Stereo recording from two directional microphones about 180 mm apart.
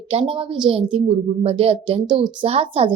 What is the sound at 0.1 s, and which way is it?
A woman's voice, 30° right (ahead or behind).